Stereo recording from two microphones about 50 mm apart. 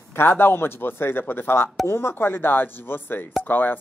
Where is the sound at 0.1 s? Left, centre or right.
Left.